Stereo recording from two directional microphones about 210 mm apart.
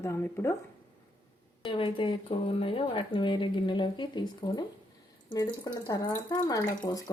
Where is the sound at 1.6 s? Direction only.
25° left (ahead or behind).